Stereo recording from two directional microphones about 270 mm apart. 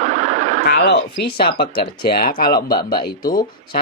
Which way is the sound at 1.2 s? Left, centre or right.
Left.